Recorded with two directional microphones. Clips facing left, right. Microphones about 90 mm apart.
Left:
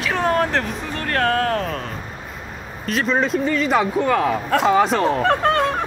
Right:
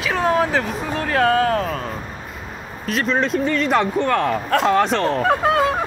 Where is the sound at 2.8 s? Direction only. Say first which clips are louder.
Even; centre (ahead or behind).